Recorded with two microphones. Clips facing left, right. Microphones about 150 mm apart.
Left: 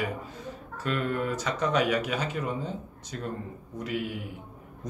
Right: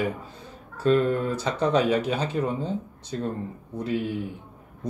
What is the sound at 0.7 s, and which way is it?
Speech, 30° right (ahead or behind).